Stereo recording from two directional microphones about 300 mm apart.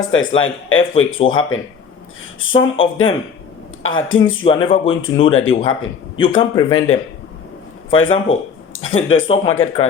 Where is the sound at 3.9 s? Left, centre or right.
Left.